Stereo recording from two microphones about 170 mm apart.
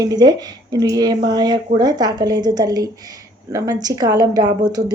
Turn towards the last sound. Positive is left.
turn(degrees=-20)  # may be behind; listen again after turning